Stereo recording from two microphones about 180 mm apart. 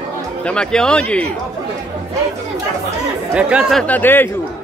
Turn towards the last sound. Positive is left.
turn(degrees=10)  # may be behind; listen again after turning